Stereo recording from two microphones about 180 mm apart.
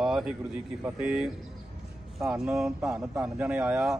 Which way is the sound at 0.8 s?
5° right (ahead or behind).